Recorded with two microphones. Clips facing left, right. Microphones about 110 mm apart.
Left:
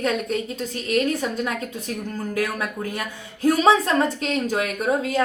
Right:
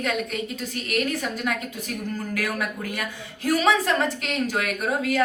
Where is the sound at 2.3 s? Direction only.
30° left (ahead or behind).